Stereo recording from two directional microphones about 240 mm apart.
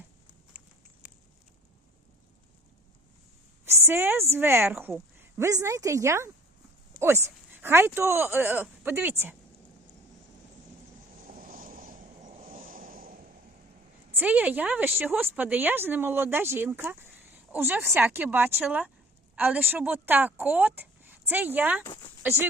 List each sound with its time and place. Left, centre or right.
3.7 s speech: centre
11.3 s vehicle: right
14.1 s speech: centre